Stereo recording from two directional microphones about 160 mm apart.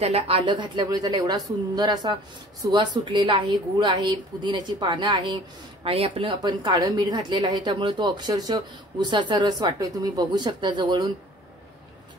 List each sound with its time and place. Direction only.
0.0 s a woman's voice: 40° right (ahead or behind)